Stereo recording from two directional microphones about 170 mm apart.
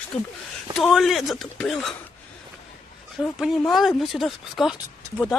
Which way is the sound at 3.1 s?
Centre (ahead or behind).